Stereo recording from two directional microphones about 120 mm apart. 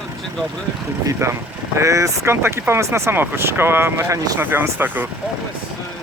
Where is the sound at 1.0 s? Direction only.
25° right (ahead or behind).